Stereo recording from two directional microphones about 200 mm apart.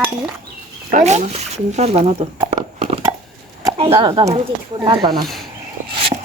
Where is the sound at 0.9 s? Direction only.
40° right (ahead or behind).